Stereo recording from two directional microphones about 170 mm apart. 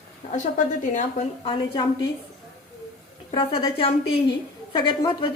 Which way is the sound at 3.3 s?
35° left (ahead or behind).